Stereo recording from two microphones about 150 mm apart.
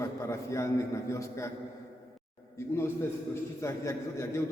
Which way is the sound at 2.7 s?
15° left (ahead or behind).